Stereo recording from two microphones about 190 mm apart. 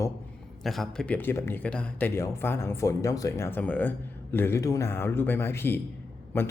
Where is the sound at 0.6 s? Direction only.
Centre (ahead or behind).